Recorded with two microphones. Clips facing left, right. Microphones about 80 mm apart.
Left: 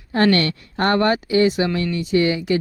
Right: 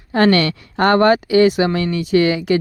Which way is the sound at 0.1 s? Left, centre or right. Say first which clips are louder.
Right 3 dB; right.